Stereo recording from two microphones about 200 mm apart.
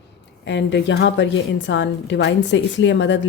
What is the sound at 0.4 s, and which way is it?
A woman's voice, 65° left (ahead or behind).